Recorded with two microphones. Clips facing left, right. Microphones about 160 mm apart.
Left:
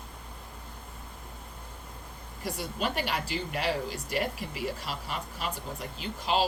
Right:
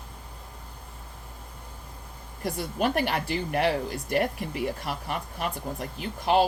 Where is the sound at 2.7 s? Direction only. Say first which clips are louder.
Right 6 dB; 55° right (ahead or behind).